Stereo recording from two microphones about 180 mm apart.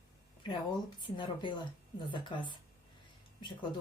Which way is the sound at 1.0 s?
25° left (ahead or behind).